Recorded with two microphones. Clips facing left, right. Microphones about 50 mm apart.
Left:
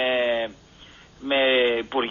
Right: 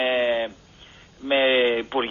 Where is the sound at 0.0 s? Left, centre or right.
Centre.